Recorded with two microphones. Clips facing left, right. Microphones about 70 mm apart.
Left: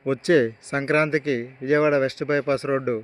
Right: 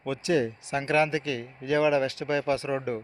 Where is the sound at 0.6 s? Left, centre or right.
Left.